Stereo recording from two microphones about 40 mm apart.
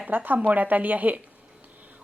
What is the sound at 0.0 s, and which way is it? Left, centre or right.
Speech, right.